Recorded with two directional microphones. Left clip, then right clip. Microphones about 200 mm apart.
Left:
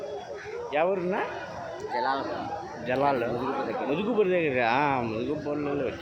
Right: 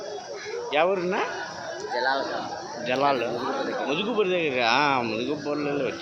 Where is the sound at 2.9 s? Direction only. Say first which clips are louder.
Right 2 dB; 10° left (ahead or behind).